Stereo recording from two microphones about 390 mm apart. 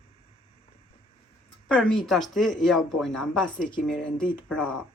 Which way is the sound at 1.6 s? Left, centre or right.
Centre.